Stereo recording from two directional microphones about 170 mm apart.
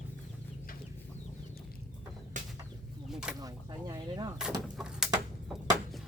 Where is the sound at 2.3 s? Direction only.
50° right (ahead or behind).